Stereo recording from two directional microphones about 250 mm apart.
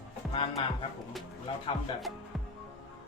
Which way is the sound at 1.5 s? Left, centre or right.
Left.